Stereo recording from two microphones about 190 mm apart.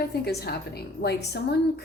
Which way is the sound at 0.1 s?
55° left (ahead or behind).